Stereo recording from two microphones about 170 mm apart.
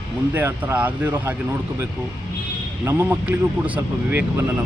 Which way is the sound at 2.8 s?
10° right (ahead or behind).